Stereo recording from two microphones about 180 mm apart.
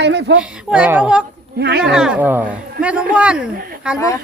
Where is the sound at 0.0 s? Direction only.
70° right (ahead or behind).